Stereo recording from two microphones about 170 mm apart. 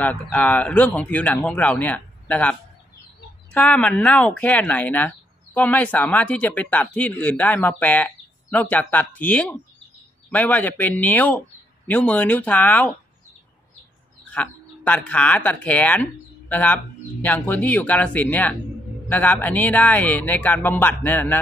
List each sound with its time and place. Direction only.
0.0 s speech: 10° left (ahead or behind)
3.5 s speech: 5° left (ahead or behind)
14.3 s speech: 10° left (ahead or behind)